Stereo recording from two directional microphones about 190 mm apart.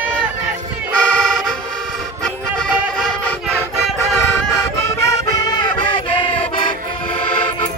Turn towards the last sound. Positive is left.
turn(degrees=25)  # may be behind; listen again after turning